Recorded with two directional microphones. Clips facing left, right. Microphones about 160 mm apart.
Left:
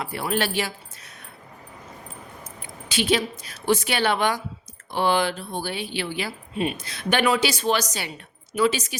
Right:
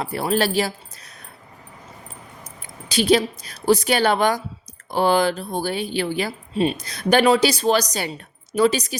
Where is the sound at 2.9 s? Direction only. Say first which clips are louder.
Right 5 dB; 40° right (ahead or behind).